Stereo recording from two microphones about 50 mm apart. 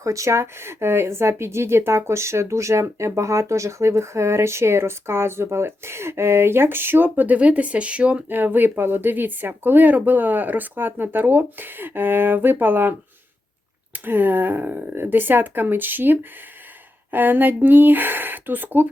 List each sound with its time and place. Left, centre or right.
0.0 s speech: right
7.3 s speech: right
8.3 s speech: right